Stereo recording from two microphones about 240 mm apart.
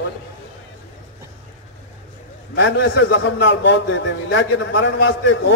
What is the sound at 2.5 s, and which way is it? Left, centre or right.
A man's voice, left.